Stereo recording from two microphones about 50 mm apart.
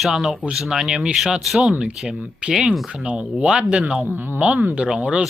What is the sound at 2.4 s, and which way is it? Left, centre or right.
Speech, centre.